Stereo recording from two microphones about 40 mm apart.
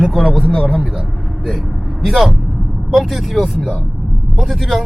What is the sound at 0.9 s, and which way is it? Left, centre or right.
Vehicle, centre.